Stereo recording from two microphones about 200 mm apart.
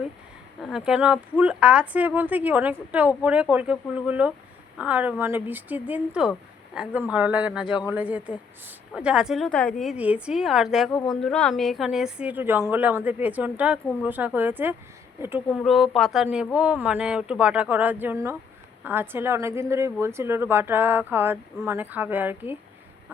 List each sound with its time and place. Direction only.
0.6 s a woman's voice: 5° right (ahead or behind)
7.6 s a man's voice: 25° left (ahead or behind)
7.9 s a woman's voice: 5° right (ahead or behind)